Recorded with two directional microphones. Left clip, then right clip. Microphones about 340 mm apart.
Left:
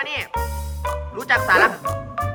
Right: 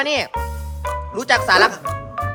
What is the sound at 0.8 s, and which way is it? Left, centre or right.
Music, centre.